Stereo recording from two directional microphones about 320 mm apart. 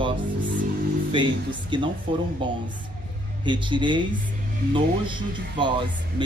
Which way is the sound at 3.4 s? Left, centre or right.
Centre.